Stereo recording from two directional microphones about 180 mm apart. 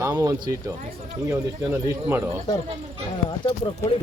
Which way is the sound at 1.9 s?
15° right (ahead or behind).